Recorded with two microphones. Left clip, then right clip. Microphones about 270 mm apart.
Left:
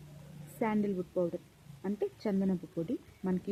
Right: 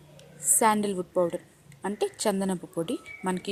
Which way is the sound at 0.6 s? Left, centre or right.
Centre.